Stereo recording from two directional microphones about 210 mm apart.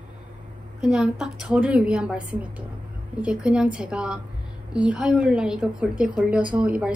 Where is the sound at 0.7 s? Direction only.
5° right (ahead or behind).